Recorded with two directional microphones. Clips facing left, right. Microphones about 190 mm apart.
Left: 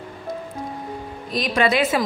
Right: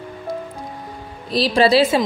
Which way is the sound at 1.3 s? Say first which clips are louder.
Right 5 dB; 30° right (ahead or behind).